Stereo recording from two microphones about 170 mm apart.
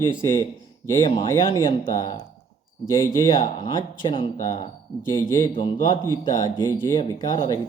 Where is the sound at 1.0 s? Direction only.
30° left (ahead or behind).